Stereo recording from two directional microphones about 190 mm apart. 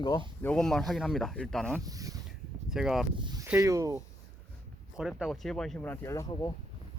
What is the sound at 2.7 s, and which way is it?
Speech, centre (ahead or behind).